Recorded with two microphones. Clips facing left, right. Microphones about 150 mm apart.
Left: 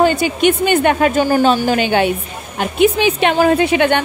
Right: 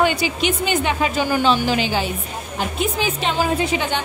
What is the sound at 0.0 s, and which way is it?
A woman's voice, 50° left (ahead or behind).